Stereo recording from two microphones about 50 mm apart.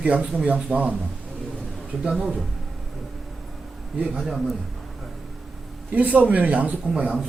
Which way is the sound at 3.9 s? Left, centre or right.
Right.